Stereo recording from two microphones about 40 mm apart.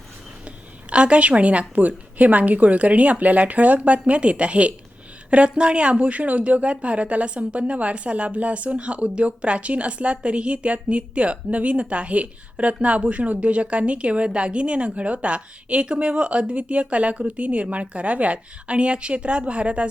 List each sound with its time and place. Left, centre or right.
0.4 s a woman's voice: right